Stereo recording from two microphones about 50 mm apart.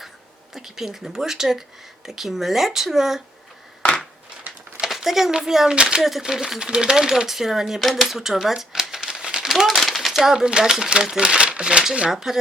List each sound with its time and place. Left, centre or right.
0.5 s speech: centre
4.8 s a child's voice: centre
5.7 s speech: centre
6.0 s speech: centre
9.5 s speech: centre
12.1 s speech: centre